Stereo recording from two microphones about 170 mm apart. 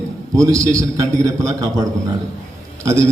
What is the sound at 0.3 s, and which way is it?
A man's voice, 20° right (ahead or behind).